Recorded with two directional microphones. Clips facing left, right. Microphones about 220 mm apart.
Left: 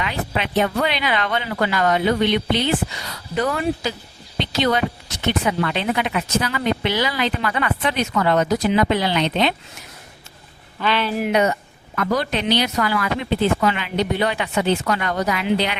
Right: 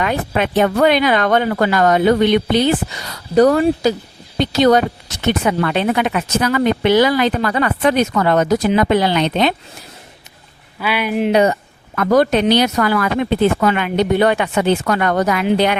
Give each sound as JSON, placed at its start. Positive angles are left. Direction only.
{"t": 0.0, "sound": "speech", "side_deg": -50}
{"t": 10.8, "sound": "speech", "side_deg": -10}
{"t": 11.2, "sound": "speech", "side_deg": -30}
{"t": 11.9, "sound": "speech", "side_deg": -45}